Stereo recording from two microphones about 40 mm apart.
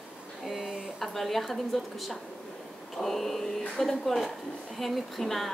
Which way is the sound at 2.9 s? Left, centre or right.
Centre.